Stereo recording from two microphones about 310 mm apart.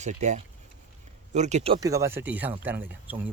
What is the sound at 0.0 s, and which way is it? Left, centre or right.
Speech, right.